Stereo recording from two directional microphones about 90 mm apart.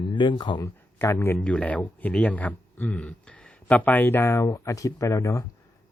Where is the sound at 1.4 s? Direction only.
15° left (ahead or behind).